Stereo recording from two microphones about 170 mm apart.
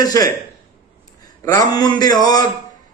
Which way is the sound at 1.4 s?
20° left (ahead or behind).